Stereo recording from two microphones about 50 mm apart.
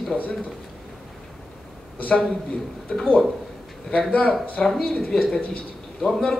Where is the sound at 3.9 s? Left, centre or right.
Left.